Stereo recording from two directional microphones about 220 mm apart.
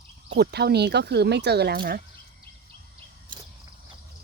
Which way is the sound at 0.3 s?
50° right (ahead or behind).